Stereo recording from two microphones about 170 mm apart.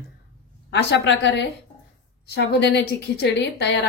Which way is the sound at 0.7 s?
90° left.